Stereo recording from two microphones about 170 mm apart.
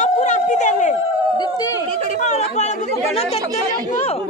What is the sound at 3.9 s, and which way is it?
Chatter, 40° left (ahead or behind).